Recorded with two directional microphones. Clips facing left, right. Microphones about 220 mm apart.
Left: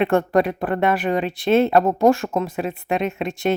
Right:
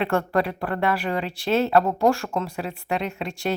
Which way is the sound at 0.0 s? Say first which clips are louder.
Left 5 dB; 20° left (ahead or behind).